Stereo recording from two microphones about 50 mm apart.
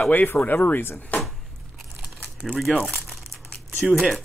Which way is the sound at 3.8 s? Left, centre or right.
Centre.